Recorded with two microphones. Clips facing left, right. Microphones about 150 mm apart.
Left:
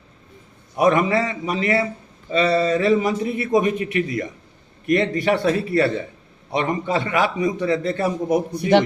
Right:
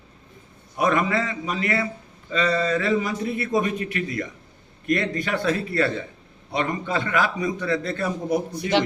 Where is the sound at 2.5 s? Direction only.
30° left (ahead or behind).